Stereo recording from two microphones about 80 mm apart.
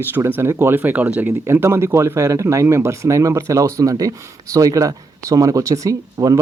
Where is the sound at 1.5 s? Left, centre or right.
Right.